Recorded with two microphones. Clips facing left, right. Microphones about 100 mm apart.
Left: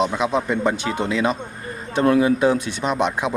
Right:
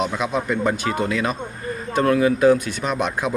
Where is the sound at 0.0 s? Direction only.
25° left (ahead or behind).